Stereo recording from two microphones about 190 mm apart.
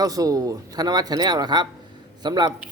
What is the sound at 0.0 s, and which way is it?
A man's voice, 20° right (ahead or behind).